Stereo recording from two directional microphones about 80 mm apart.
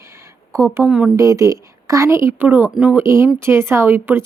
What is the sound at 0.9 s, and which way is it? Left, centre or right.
Speech, centre.